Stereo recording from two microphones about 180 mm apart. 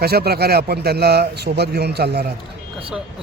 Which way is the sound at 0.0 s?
60° right (ahead or behind).